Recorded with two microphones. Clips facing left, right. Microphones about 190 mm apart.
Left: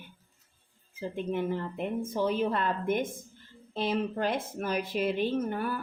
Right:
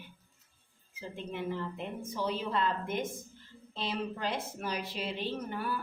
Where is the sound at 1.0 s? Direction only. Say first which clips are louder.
Left 7 dB; 50° left (ahead or behind).